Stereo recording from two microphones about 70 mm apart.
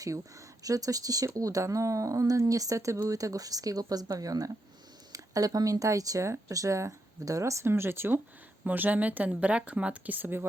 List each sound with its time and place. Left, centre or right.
0.0 s speech: right
7.7 s speech: right